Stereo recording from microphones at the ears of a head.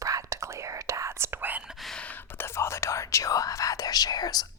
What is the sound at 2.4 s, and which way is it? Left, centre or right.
Whispering, left.